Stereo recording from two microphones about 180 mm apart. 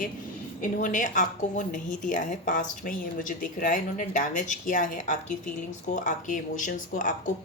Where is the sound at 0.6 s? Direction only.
45° left (ahead or behind).